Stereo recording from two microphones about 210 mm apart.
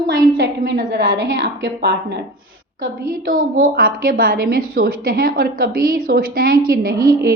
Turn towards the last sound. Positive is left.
turn(degrees=-45)  # may be behind; listen again after turning